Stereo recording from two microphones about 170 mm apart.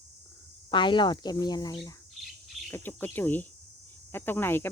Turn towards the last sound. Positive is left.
turn(degrees=15)  # may be behind; listen again after turning